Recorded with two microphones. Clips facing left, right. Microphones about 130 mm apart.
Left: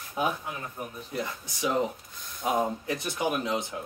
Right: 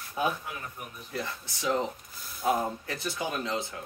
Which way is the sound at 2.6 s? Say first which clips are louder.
Left 4 dB; 20° left (ahead or behind).